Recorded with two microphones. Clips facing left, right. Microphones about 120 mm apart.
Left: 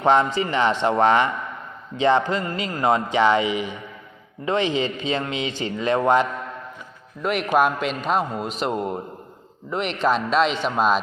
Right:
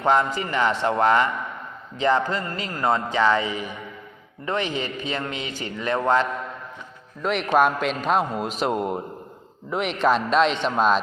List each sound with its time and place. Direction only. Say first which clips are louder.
0.0 s a man's voice: left 2 dB; 20° left (ahead or behind)
7.2 s a man's voice: even; 5° left (ahead or behind)